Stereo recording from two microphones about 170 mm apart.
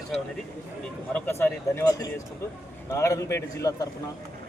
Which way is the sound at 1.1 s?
15° left (ahead or behind).